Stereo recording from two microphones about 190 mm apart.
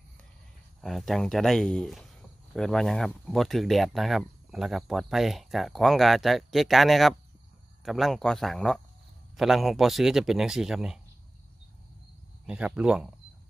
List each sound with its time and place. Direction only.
0.7 s speech: centre (ahead or behind)
12.4 s speech: 5° right (ahead or behind)